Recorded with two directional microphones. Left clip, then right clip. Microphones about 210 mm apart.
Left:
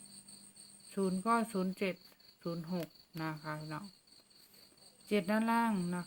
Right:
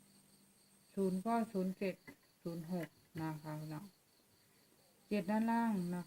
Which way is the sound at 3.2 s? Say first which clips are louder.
Left 4 dB; 25° left (ahead or behind).